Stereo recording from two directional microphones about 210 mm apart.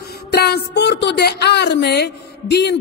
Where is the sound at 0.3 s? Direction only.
50° left (ahead or behind).